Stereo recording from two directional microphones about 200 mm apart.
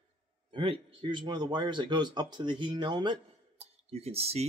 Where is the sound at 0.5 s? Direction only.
25° right (ahead or behind).